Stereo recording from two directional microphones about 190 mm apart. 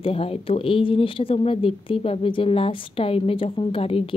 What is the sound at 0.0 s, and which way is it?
Speech, 30° left (ahead or behind).